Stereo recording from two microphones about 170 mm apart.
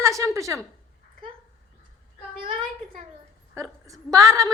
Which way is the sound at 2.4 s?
30° right (ahead or behind).